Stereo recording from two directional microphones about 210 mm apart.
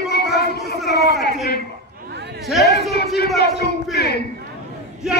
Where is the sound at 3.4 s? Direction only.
50° left (ahead or behind).